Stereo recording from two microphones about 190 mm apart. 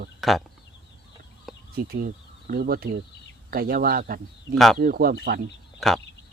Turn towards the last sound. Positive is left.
turn(degrees=0)  # may be behind; listen again after turning